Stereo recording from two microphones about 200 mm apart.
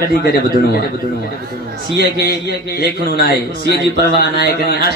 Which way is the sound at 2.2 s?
50° left (ahead or behind).